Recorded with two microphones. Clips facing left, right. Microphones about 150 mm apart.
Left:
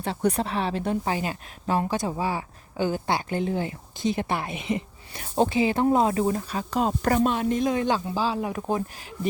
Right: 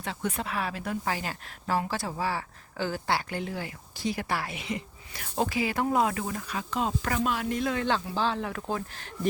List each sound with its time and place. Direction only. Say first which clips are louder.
0.0 s speech: left 7 dB; 35° left (ahead or behind)
7.3 s speech: left 5 dB; 25° left (ahead or behind)